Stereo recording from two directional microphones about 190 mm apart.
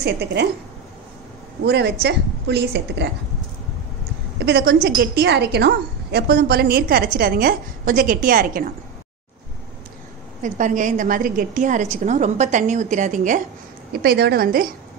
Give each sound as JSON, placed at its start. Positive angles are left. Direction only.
{"t": 0.0, "sound": "a woman's voice", "side_deg": -60}
{"t": 1.6, "sound": "a woman's voice", "side_deg": -60}
{"t": 4.4, "sound": "a woman's voice", "side_deg": -60}
{"t": 10.4, "sound": "a woman's voice", "side_deg": -40}
{"t": 13.9, "sound": "a woman's voice", "side_deg": -55}